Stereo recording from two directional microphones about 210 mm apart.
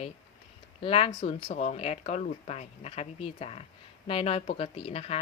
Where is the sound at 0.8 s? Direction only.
25° left (ahead or behind).